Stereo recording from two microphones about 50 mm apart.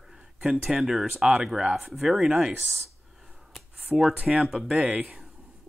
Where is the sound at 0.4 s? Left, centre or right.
Centre.